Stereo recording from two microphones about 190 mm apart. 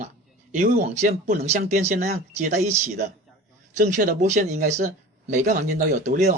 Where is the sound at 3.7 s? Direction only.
40° right (ahead or behind).